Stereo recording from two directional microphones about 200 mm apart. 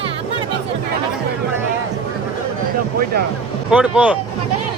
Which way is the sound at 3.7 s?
5° right (ahead or behind).